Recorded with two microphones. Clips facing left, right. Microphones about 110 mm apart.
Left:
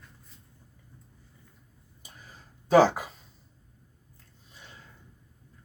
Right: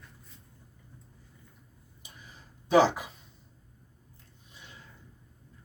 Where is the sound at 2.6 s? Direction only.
45° left (ahead or behind).